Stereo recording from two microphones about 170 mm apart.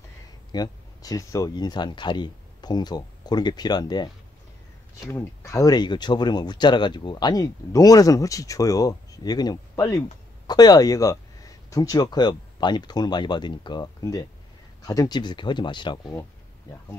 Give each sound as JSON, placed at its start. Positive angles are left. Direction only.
{"t": 0.5, "sound": "speech", "side_deg": 20}
{"t": 5.1, "sound": "speech", "side_deg": 20}